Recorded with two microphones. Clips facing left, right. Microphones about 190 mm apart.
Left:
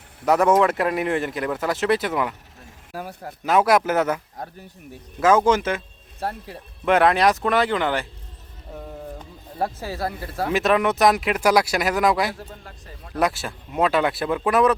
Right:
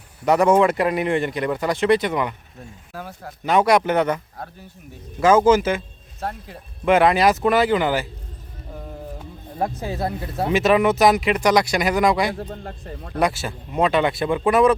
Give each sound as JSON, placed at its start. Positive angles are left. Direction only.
{"t": 0.3, "sound": "speech", "side_deg": 0}
{"t": 5.2, "sound": "speech", "side_deg": 0}
{"t": 9.1, "sound": "speech", "side_deg": -15}
{"t": 10.5, "sound": "speech", "side_deg": 0}